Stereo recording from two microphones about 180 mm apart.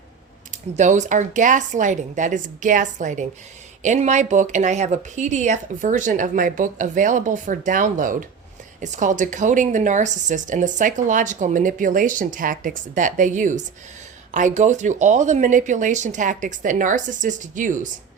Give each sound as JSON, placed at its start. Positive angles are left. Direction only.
{"t": 0.5, "sound": "a woman's voice", "side_deg": -40}